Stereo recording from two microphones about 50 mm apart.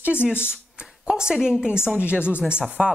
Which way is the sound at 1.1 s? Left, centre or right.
Centre.